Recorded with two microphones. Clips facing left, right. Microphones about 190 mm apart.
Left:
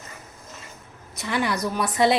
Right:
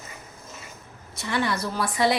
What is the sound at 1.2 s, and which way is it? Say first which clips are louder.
A woman's voice: left 1 dB; 20° left (ahead or behind).